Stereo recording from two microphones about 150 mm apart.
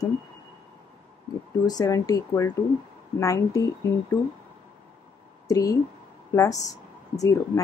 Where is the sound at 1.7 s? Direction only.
25° left (ahead or behind).